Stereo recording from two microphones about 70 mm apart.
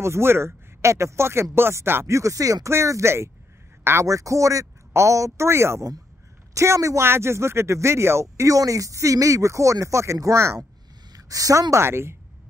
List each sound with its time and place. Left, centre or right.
0.0 s speech: right
2.7 s speech: right
4.0 s speech: right
11.1 s a sound: right
11.7 s speech: right